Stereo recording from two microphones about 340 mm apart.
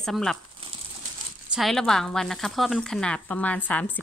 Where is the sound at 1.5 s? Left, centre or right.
Centre.